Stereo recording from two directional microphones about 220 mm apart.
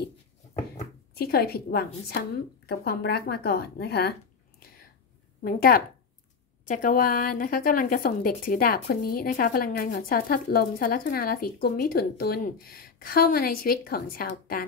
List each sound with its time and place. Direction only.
1.1 s a woman's voice: 45° left (ahead or behind)
5.4 s a woman's voice: 40° left (ahead or behind)